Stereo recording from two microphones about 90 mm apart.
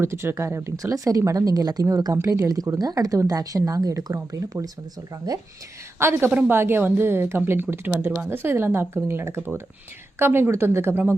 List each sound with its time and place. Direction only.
0.0 s speech: 30° right (ahead or behind)
6.0 s a woman's voice: 25° right (ahead or behind)